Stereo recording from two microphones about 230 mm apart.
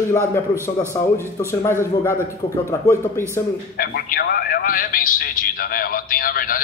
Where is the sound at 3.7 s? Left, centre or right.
Left.